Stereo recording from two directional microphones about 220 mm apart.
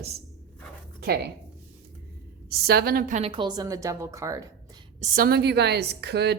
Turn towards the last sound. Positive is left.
turn(degrees=-50)  # may be behind; listen again after turning